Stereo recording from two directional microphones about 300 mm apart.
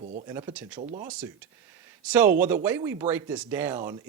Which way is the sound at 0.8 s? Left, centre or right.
Right.